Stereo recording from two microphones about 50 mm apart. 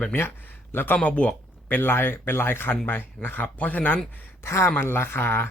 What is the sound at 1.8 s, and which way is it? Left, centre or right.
Speech, left.